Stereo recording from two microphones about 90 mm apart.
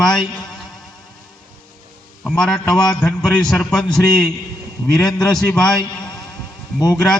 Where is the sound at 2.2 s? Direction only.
5° left (ahead or behind).